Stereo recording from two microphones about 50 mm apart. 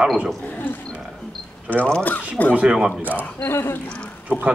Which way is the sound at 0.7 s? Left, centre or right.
Left.